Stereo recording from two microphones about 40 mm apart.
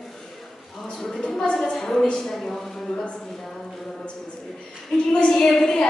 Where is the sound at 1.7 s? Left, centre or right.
Centre.